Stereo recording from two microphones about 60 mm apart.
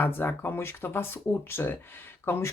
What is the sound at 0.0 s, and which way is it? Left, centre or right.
Speech, left.